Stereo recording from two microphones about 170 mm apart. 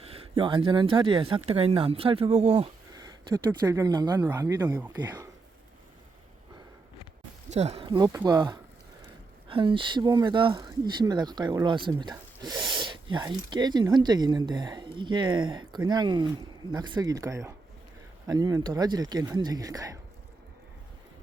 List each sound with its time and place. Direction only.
0.0 s speech: 35° right (ahead or behind)
2.9 s speech: 20° right (ahead or behind)
4.3 s speech: 15° right (ahead or behind)
7.5 s speech: 35° right (ahead or behind); by 20.0 s 20° right (ahead or behind)